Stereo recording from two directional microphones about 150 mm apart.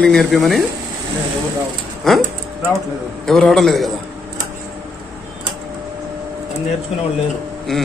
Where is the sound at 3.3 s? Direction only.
5° left (ahead or behind).